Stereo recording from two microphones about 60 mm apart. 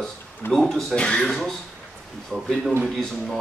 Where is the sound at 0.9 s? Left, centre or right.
Centre.